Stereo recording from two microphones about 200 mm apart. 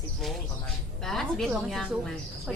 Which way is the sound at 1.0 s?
Centre (ahead or behind).